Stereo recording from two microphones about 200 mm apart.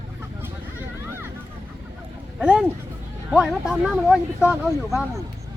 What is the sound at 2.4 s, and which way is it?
Speech, 5° right (ahead or behind).